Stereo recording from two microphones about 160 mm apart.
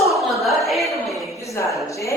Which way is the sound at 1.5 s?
20° left (ahead or behind).